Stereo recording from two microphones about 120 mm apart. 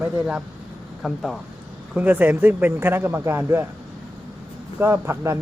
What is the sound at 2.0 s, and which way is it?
Speech, 15° right (ahead or behind).